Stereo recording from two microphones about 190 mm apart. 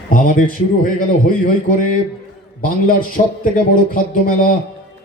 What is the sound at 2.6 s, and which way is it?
A man's voice, 45° left (ahead or behind).